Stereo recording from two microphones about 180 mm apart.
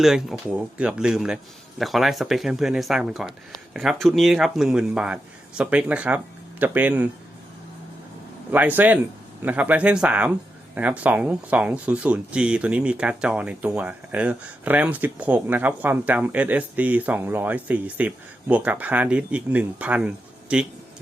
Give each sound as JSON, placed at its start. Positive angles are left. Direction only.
{"t": 0.0, "sound": "speech", "side_deg": 0}
{"t": 8.4, "sound": "speech", "side_deg": -10}